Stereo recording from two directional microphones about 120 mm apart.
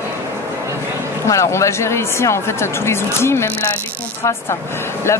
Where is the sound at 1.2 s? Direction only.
25° left (ahead or behind).